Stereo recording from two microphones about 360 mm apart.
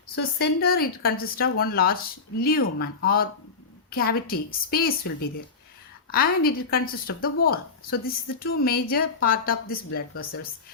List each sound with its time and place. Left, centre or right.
0.2 s speech: left
6.1 s speech: left